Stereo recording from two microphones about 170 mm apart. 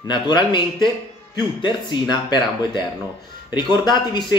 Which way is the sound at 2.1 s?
25° left (ahead or behind).